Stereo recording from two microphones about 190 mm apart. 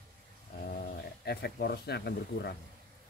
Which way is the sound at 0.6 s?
55° left (ahead or behind).